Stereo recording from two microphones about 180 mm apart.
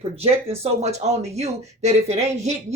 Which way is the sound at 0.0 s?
35° right (ahead or behind).